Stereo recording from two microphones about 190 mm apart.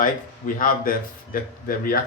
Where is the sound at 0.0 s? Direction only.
45° left (ahead or behind).